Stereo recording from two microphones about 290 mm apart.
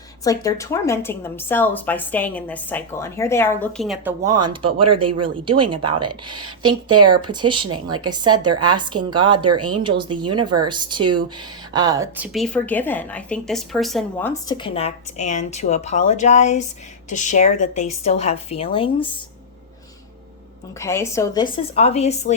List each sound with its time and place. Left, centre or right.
0.3 s a woman's voice: centre
4.9 s speech: right
5.2 s a woman's voice: centre
20.7 s a woman's voice: centre